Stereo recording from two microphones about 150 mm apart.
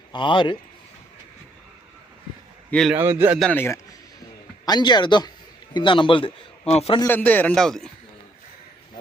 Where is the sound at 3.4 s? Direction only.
10° left (ahead or behind).